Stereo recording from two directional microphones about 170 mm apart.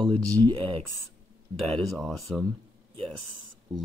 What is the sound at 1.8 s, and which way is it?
Speech, centre (ahead or behind).